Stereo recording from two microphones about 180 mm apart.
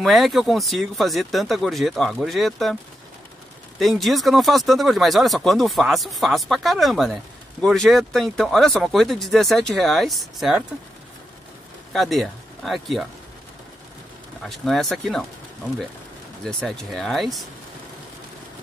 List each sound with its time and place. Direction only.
0.0 s speech: centre (ahead or behind)
3.8 s speech: centre (ahead or behind)
11.9 s speech: centre (ahead or behind)
14.4 s speech: centre (ahead or behind)
16.4 s speech: centre (ahead or behind)